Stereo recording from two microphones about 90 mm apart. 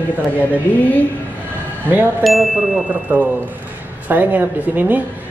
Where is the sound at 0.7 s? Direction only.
20° left (ahead or behind).